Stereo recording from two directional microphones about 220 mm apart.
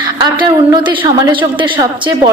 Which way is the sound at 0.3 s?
20° right (ahead or behind).